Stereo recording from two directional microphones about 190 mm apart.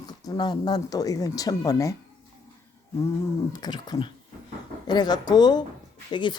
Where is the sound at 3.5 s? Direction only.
20° left (ahead or behind).